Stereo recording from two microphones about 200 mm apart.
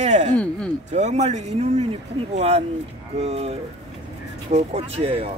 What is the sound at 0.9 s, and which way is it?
Speech, 35° right (ahead or behind).